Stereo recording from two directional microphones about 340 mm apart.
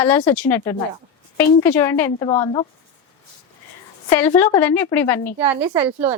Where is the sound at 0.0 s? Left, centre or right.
Centre.